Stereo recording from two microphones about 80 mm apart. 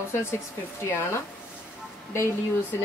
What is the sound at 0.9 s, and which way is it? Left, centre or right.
Speech, left.